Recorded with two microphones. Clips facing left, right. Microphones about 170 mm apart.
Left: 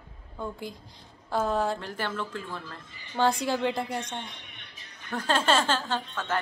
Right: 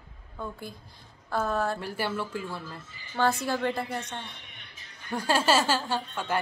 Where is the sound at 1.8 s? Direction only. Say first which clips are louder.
Right 2 dB; 10° right (ahead or behind).